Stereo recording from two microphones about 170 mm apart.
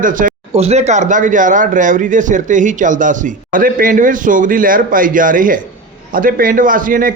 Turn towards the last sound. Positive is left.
turn(degrees=-55)  # may be behind; listen again after turning